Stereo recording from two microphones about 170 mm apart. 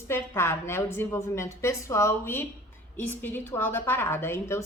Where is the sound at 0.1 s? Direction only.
15° left (ahead or behind).